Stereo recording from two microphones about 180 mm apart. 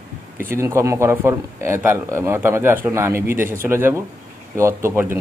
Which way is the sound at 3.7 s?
15° right (ahead or behind).